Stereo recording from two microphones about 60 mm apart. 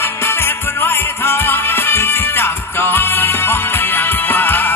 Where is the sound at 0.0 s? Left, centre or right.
Left.